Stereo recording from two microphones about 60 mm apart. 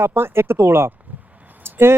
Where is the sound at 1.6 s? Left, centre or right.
Right.